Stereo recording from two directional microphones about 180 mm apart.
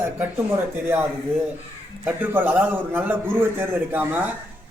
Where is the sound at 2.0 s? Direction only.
10° right (ahead or behind).